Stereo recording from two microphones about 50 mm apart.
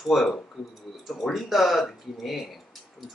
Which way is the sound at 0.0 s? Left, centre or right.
Centre.